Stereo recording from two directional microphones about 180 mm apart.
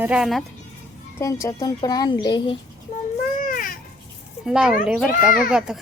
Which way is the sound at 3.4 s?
50° left (ahead or behind).